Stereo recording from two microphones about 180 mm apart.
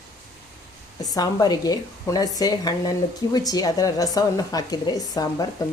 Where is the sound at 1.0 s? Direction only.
20° left (ahead or behind).